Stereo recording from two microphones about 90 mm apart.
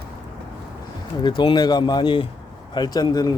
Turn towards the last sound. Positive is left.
turn(degrees=50)  # may be behind; listen again after turning